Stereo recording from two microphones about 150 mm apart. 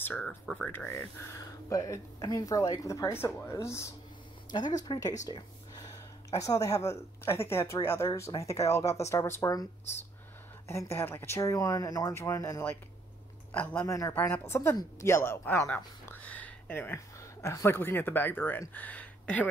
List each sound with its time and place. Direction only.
0.0 s speech: 15° left (ahead or behind)
5.2 s a sound: 25° left (ahead or behind)
6.3 s speech: 20° left (ahead or behind)
10.7 s speech: 20° left (ahead or behind)
13.5 s speech: 10° left (ahead or behind)
13.8 s a woman's voice: 20° left (ahead or behind)